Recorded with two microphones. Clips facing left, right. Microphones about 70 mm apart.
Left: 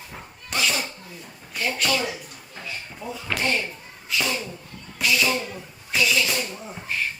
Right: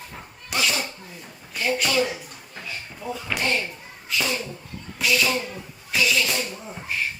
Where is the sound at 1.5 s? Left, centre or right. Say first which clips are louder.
Right 2 dB; centre.